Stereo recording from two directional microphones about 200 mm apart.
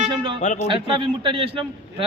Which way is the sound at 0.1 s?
25° right (ahead or behind).